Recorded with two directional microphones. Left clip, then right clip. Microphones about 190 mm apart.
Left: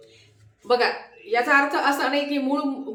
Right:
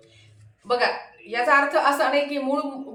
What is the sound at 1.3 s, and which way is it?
A woman's voice, 20° left (ahead or behind).